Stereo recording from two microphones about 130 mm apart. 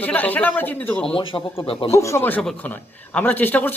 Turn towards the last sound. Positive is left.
turn(degrees=15)  # may be behind; listen again after turning